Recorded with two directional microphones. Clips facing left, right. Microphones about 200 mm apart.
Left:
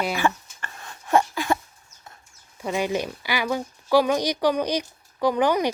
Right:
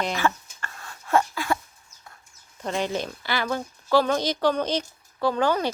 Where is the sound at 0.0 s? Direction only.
10° left (ahead or behind).